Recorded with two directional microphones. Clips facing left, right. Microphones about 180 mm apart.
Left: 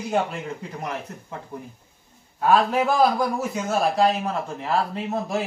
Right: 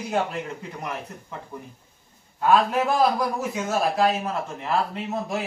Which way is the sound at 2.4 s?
Centre (ahead or behind).